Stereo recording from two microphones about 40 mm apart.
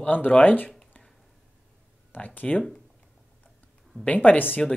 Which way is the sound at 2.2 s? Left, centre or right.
Left.